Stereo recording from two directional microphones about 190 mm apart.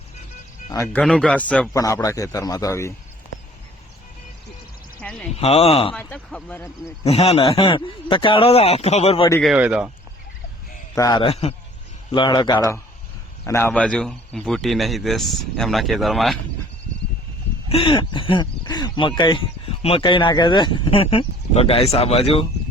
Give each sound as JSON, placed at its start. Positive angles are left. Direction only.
{"t": 0.9, "sound": "a man's voice", "side_deg": 5}
{"t": 1.7, "sound": "a man's voice", "side_deg": 15}
{"t": 5.4, "sound": "a man's voice", "side_deg": 30}
{"t": 5.9, "sound": "a man's voice", "side_deg": 5}
{"t": 7.0, "sound": "a man's voice", "side_deg": 35}
{"t": 9.4, "sound": "speech", "side_deg": -5}
{"t": 10.9, "sound": "a man's voice", "side_deg": 20}
{"t": 17.7, "sound": "speech", "side_deg": 30}